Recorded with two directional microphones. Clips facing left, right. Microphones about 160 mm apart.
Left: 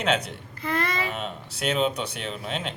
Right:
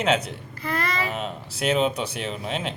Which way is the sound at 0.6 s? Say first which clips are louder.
Even; 20° left (ahead or behind).